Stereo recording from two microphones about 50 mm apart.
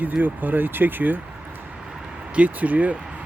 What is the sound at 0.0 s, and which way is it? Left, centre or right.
Speech, right.